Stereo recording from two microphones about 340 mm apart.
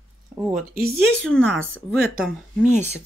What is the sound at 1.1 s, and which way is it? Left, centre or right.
Speech, centre.